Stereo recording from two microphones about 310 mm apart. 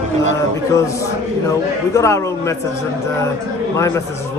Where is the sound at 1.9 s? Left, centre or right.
Centre.